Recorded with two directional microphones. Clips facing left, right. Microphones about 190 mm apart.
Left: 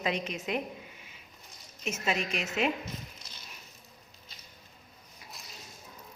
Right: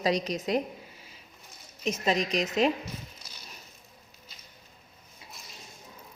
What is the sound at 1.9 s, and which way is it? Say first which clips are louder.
Speech: right 5 dB; 35° right (ahead or behind).